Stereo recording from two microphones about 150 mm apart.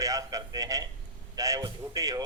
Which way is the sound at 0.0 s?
25° right (ahead or behind).